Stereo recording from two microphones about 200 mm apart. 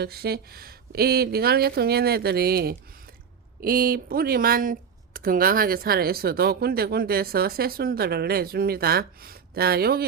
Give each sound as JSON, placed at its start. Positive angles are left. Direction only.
{"t": 0.0, "sound": "speech", "side_deg": -50}